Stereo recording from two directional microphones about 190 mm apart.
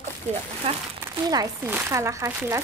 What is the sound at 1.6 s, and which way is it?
Speech, 10° right (ahead or behind).